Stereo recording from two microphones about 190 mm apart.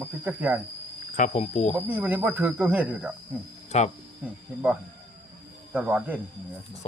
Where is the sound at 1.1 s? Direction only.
40° left (ahead or behind).